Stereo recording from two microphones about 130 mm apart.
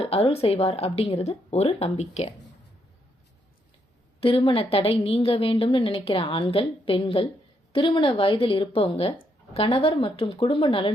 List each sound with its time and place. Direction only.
0.0 s a woman's voice: 50° left (ahead or behind)
4.2 s a woman's voice: 45° left (ahead or behind)